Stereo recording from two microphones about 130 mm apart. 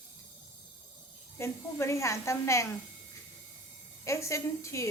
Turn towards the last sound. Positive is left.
turn(degrees=25)  # may be behind; listen again after turning